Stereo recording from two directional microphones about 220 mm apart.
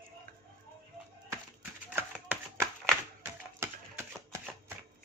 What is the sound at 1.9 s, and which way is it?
Chopping, 10° right (ahead or behind).